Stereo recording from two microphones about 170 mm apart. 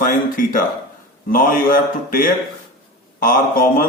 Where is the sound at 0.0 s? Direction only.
55° left (ahead or behind).